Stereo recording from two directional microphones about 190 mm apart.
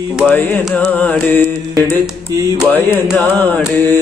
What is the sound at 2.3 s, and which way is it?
Speech, 20° right (ahead or behind).